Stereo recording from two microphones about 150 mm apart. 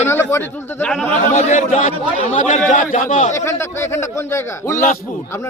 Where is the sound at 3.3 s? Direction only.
20° left (ahead or behind).